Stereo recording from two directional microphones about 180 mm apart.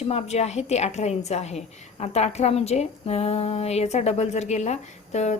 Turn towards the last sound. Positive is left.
turn(degrees=40)  # may be behind; listen again after turning